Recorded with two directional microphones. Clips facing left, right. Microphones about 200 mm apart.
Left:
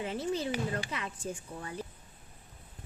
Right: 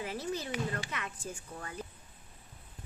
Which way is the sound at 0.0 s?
25° left (ahead or behind).